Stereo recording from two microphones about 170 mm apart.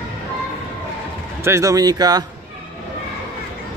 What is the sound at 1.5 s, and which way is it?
Speech, 20° right (ahead or behind).